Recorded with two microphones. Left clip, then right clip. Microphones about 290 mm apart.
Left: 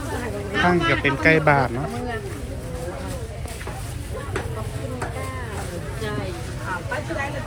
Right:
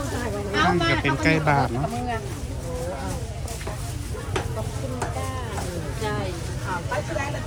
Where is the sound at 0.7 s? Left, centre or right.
Centre.